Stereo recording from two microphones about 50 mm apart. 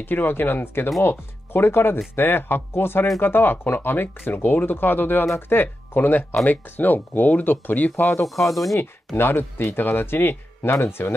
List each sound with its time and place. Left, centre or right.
0.0 s speech: left
7.9 s speech: left
8.5 s speech: centre
8.7 s speech: left